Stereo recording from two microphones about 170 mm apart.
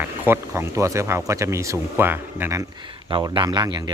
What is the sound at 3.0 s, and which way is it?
Speech, 30° right (ahead or behind).